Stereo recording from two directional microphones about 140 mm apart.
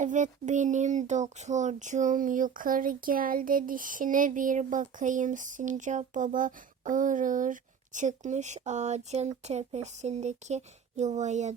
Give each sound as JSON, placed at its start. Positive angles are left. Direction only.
{"t": 0.0, "sound": "speech", "side_deg": -60}